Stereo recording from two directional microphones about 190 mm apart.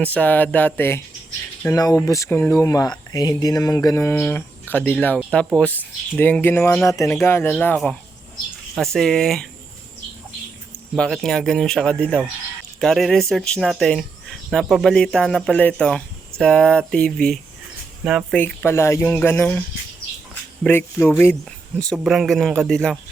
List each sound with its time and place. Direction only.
0.0 s speech: 5° left (ahead or behind)
10.9 s speech: centre (ahead or behind)
18.3 s speech: 10° left (ahead or behind)
20.7 s speech: 10° left (ahead or behind)
21.8 s speech: centre (ahead or behind)